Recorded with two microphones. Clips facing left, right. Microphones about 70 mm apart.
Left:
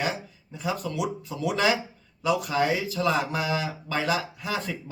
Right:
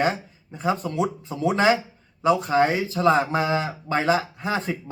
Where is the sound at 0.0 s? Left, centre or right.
Right.